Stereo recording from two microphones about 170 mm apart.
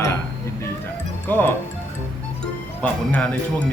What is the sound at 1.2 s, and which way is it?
Speech, 10° left (ahead or behind).